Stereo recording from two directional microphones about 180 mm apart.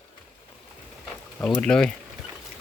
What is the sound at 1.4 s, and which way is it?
Speech, 10° left (ahead or behind).